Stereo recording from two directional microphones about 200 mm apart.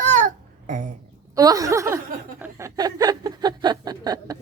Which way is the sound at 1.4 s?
15° right (ahead or behind).